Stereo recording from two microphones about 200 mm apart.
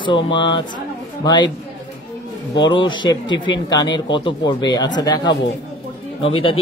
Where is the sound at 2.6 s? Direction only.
25° left (ahead or behind).